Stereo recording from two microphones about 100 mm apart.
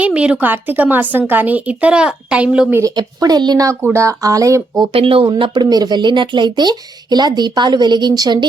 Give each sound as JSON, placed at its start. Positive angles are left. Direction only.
{"t": 0.0, "sound": "a woman's voice", "side_deg": -15}
{"t": 2.9, "sound": "speech", "side_deg": -45}
{"t": 3.9, "sound": "speech", "side_deg": -35}
{"t": 4.9, "sound": "speech", "side_deg": -65}